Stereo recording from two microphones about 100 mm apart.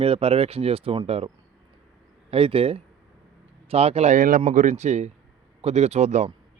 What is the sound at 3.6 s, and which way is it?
Speech, 90° right.